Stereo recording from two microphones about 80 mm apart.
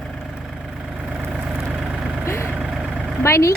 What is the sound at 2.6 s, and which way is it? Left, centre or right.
Vehicle, centre.